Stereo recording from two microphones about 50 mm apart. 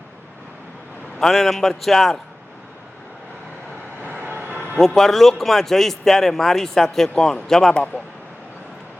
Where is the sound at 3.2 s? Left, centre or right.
Left.